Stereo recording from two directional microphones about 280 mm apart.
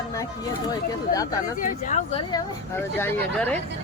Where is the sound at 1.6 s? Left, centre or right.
Left.